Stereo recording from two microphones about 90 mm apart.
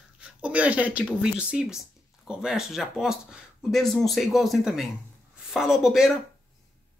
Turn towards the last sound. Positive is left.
turn(degrees=-5)  # may be behind; listen again after turning